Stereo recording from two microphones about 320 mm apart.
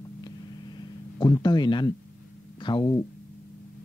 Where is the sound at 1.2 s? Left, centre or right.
Centre.